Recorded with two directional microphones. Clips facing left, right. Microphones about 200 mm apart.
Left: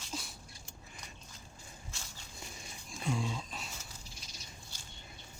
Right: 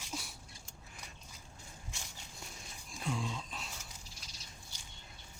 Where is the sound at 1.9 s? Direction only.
15° right (ahead or behind).